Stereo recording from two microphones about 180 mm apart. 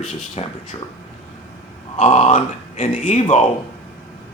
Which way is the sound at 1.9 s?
40° left (ahead or behind).